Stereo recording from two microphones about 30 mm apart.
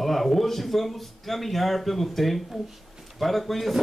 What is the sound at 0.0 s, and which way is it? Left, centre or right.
Speech, centre.